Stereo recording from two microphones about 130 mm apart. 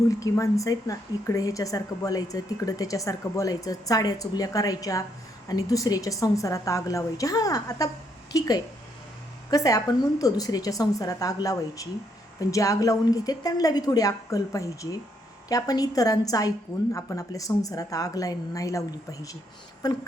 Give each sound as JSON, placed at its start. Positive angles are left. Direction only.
{"t": 0.1, "sound": "a woman's voice", "side_deg": 25}
{"t": 19.8, "sound": "a woman's voice", "side_deg": 30}